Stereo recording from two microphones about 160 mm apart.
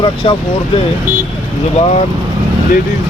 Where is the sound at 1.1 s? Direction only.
10° right (ahead or behind).